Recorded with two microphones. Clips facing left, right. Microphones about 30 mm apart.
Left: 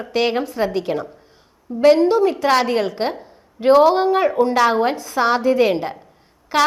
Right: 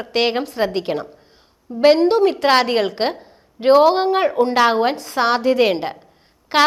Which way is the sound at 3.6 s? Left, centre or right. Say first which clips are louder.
Even; right.